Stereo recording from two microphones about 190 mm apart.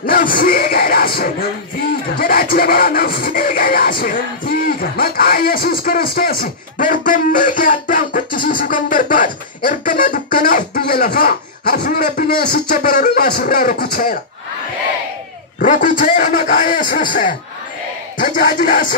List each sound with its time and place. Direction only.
0.0 s music: 50° left (ahead or behind)
15.6 s music: 45° left (ahead or behind)